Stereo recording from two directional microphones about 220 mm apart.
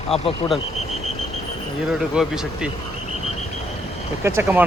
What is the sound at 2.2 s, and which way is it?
Speech, centre (ahead or behind).